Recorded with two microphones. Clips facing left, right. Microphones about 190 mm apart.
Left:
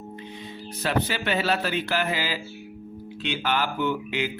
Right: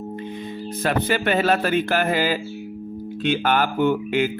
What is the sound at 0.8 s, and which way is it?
Speech, 50° right (ahead or behind).